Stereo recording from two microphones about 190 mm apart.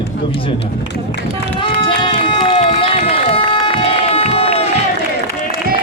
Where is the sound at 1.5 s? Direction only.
25° left (ahead or behind).